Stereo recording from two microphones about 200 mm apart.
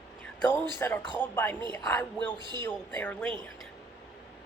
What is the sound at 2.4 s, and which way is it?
Speech, 20° right (ahead or behind).